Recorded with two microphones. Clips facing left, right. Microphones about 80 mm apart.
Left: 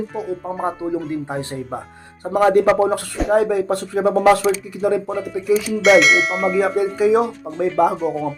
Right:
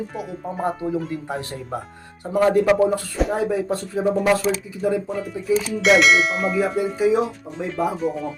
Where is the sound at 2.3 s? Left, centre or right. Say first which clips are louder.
Left 3 dB; left.